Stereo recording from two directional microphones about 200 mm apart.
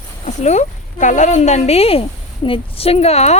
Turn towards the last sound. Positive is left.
turn(degrees=35)  # may be behind; listen again after turning